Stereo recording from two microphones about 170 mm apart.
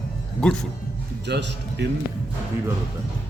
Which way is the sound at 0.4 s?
5° left (ahead or behind).